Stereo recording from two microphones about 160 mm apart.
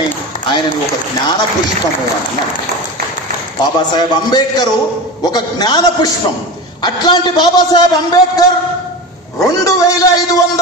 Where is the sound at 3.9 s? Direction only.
25° left (ahead or behind).